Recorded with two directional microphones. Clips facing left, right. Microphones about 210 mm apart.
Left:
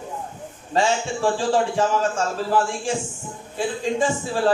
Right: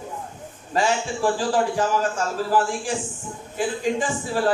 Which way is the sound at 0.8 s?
25° left (ahead or behind).